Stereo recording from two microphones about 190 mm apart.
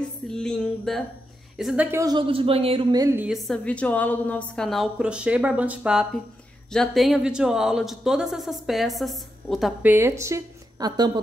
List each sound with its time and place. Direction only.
0.3 s speech: 5° left (ahead or behind)
1.9 s speech: 20° right (ahead or behind)
3.3 s speech: 5° left (ahead or behind); by 11.1 s 20° right (ahead or behind)